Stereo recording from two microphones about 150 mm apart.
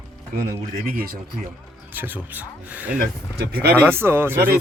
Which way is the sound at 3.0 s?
90° right.